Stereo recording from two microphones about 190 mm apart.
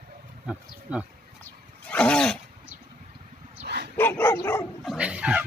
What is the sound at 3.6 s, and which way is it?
Bow-wow, 60° right (ahead or behind).